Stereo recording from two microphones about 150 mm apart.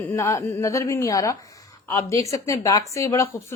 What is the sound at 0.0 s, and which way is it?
A woman's voice, 20° left (ahead or behind).